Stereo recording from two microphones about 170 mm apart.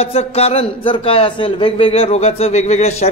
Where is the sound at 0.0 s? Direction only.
35° left (ahead or behind).